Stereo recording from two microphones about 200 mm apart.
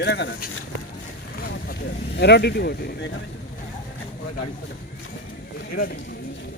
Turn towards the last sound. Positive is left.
turn(degrees=45)  # may be behind; listen again after turning